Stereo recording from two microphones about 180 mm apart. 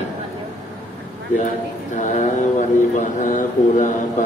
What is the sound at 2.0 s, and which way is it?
Mantra, 45° left (ahead or behind).